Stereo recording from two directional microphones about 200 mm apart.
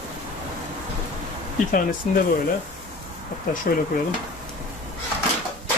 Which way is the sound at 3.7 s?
45° left (ahead or behind).